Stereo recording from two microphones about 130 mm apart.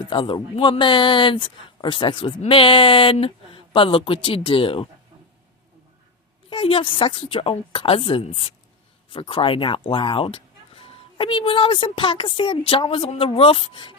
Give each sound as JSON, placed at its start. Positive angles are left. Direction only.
{"t": 0.0, "sound": "speech", "side_deg": 40}
{"t": 6.5, "sound": "speech", "side_deg": 40}